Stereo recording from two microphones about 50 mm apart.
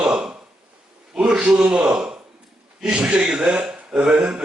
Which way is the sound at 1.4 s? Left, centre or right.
Right.